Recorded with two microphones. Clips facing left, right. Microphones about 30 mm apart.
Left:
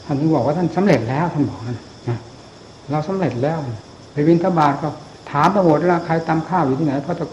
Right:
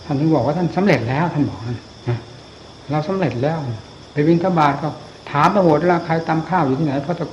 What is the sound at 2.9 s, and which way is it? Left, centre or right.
Speech, right.